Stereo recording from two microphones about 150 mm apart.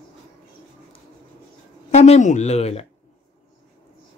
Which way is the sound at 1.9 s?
50° left (ahead or behind).